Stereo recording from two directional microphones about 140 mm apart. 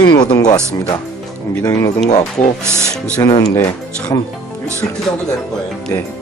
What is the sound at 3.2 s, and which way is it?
Speech, 25° left (ahead or behind).